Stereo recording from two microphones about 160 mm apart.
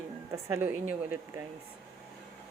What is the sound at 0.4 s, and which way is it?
Speech, 15° right (ahead or behind).